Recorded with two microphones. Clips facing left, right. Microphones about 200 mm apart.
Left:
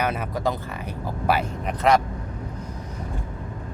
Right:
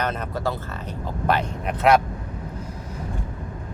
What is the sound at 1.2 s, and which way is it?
Speech, centre (ahead or behind).